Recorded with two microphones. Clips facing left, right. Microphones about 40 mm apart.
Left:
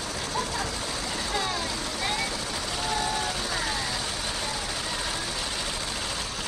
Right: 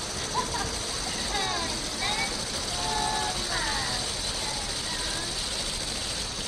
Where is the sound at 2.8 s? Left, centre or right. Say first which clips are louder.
Even; left.